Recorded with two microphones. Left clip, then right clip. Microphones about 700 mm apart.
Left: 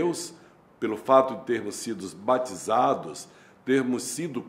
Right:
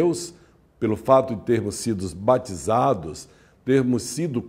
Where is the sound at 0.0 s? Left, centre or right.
Right.